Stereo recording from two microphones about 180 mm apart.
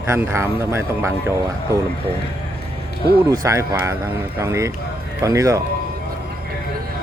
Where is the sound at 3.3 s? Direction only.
15° right (ahead or behind).